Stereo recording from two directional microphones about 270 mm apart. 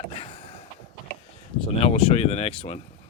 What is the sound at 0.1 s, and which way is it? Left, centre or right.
Vehicle, left.